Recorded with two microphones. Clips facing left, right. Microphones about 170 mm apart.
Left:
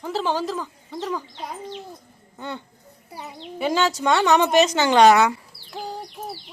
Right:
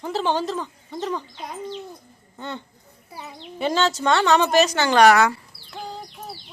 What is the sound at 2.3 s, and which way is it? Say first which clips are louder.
A woman's voice: even; 10° left (ahead or behind).